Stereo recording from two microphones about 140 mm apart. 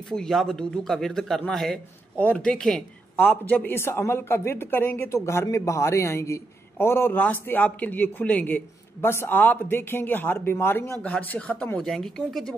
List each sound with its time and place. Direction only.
0.1 s a man's voice: centre (ahead or behind)